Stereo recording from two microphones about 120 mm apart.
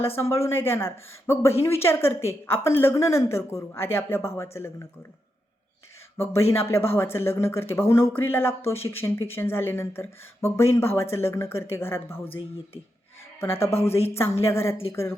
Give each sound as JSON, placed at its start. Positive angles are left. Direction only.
{"t": 0.0, "sound": "a woman's voice", "side_deg": 20}
{"t": 6.5, "sound": "a woman's voice", "side_deg": 20}